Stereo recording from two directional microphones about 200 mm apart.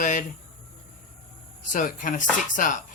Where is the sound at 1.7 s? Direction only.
40° left (ahead or behind).